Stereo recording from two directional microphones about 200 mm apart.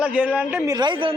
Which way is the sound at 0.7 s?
20° right (ahead or behind).